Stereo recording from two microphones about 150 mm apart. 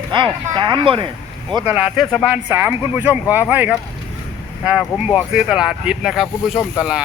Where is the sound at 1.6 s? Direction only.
5° right (ahead or behind).